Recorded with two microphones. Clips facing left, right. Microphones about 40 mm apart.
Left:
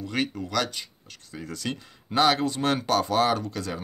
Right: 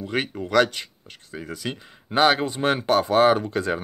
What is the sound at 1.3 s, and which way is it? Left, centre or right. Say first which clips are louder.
Speech: right 2 dB; centre.